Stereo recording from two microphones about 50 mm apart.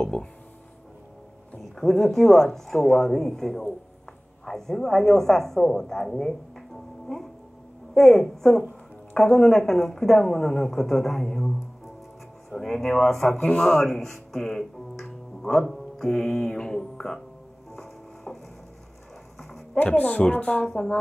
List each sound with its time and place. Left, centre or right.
0.0 s speech: left
1.8 s a woman's voice: centre
15.4 s music: centre
16.2 s speech: centre
17.7 s music: centre
19.8 s speech: left